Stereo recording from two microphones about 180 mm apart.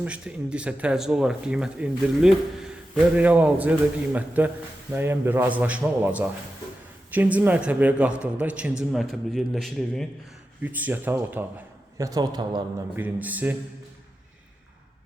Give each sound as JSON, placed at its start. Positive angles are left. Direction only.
{"t": 0.0, "sound": "a man's voice", "side_deg": -5}
{"t": 13.0, "sound": "speech", "side_deg": -10}